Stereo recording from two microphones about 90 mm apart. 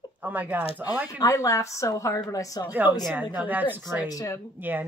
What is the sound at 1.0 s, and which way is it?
Speech, 40° left (ahead or behind).